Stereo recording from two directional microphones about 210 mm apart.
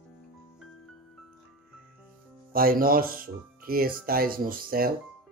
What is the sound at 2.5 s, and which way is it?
Speech, 45° right (ahead or behind).